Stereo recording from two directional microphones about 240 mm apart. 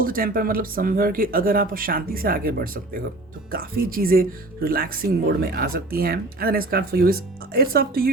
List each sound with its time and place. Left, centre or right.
0.0 s speech: right